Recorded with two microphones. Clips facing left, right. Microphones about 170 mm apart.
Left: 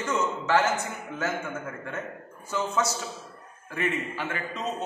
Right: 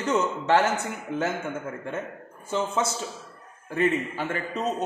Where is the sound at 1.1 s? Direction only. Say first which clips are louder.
Right 3 dB; 30° right (ahead or behind).